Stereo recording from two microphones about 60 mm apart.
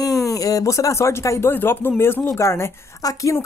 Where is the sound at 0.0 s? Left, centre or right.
Left.